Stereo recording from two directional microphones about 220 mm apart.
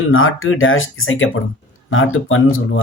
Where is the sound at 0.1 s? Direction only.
65° left (ahead or behind).